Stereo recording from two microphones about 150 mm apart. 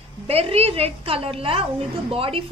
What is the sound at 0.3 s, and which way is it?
A woman's voice, 40° right (ahead or behind).